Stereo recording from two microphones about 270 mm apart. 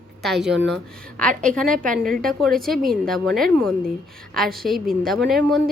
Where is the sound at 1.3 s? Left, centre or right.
Right.